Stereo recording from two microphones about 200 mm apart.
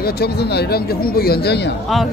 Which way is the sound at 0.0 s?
55° left (ahead or behind).